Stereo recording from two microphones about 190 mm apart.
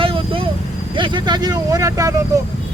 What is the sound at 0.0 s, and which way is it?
Vehicle, 30° right (ahead or behind).